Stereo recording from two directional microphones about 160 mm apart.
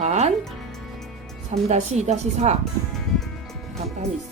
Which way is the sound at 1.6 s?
45° right (ahead or behind).